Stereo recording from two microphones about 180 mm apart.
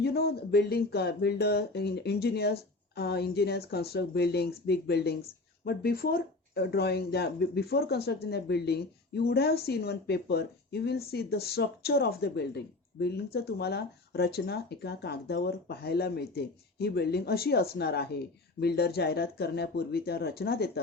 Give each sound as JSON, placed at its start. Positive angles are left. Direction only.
{"t": 0.0, "sound": "speech", "side_deg": 60}